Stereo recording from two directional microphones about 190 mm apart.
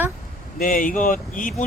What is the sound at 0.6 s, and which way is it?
Speech, 45° left (ahead or behind).